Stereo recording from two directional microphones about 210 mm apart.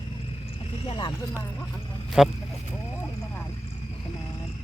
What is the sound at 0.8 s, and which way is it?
Speech, 25° left (ahead or behind).